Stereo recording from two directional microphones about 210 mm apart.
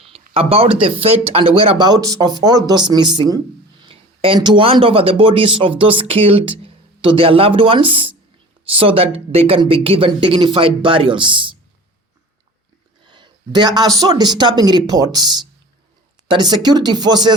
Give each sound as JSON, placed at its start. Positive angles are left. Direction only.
{"t": 0.1, "sound": "speech", "side_deg": -30}
{"t": 13.1, "sound": "speech", "side_deg": -20}